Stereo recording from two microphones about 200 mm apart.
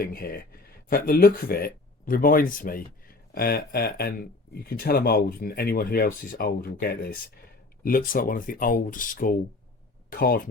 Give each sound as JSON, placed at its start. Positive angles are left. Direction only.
{"t": 0.0, "sound": "speech", "side_deg": 45}